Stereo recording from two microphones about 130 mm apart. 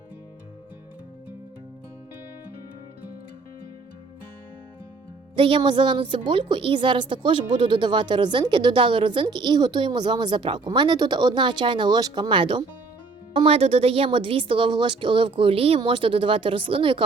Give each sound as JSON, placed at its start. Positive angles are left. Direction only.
{"t": 5.4, "sound": "a woman's voice", "side_deg": -40}